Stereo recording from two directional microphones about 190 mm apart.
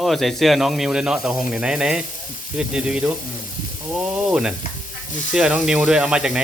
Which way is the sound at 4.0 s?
5° right (ahead or behind).